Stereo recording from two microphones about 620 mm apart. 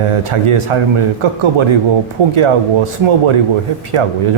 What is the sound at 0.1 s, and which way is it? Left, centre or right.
Speech, right.